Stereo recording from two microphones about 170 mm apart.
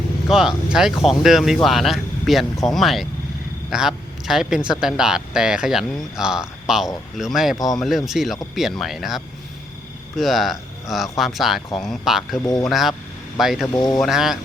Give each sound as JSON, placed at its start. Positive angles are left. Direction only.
{"t": 0.3, "sound": "speech", "side_deg": 0}
{"t": 13.7, "sound": "speech", "side_deg": 20}
{"t": 14.0, "sound": "speech", "side_deg": 0}